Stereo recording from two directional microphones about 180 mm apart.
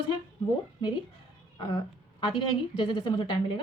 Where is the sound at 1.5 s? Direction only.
25° left (ahead or behind).